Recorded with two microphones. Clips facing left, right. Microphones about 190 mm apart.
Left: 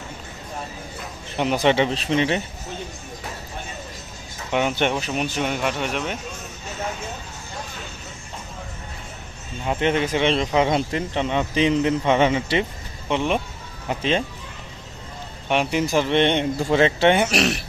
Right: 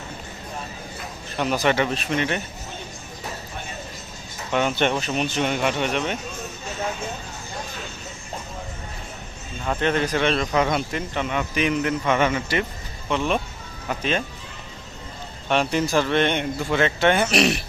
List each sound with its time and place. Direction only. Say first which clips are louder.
1.4 s speech: left 2 dB; 20° left (ahead or behind)
4.5 s speech: even; 15° left (ahead or behind)
9.6 s speech: left 1 dB; 20° left (ahead or behind)
15.4 s speech: even; 15° left (ahead or behind)
17.2 s speech: right 1 dB; centre (ahead or behind)